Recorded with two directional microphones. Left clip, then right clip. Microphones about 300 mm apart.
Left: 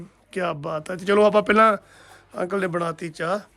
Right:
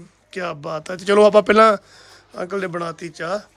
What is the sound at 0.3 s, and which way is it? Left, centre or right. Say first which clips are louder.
Speech: even; centre.